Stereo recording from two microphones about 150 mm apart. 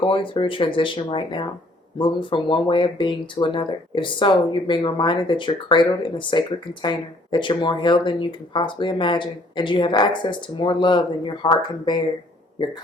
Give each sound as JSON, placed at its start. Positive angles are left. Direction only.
{"t": 0.0, "sound": "speech", "side_deg": 35}